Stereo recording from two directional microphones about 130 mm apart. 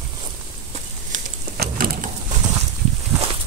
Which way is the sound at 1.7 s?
90° right.